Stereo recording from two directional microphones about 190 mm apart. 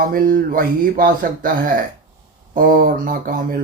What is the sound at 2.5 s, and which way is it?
Speech, 45° right (ahead or behind).